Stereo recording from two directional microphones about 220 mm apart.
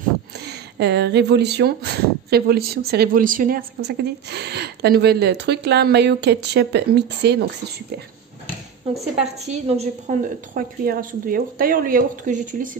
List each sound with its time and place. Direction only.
0.5 s speech: 50° right (ahead or behind)
9.2 s a woman's voice: 30° right (ahead or behind)